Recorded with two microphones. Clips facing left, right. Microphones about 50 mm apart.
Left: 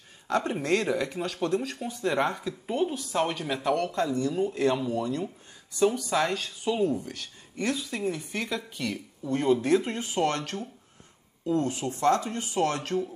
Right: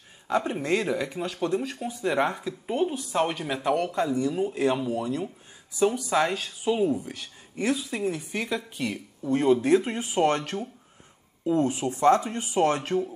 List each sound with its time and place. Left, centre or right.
0.3 s speech: centre